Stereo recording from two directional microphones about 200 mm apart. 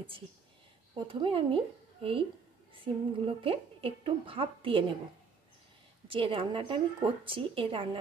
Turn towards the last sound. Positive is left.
turn(degrees=-25)  # may be behind; listen again after turning